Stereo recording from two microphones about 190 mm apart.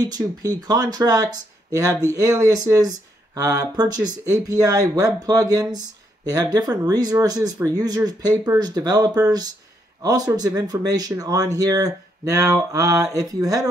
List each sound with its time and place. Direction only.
0.0 s speech: 20° right (ahead or behind)